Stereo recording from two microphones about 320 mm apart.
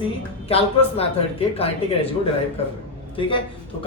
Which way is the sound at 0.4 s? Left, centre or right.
Centre.